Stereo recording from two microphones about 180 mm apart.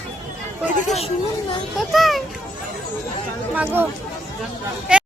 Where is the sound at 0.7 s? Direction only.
40° left (ahead or behind).